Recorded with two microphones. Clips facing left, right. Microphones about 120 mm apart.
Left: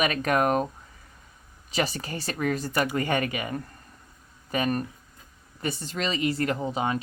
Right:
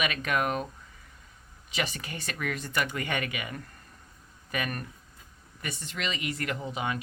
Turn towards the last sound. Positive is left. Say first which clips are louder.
# left 5 dB
turn(degrees=35)  # may be behind; listen again after turning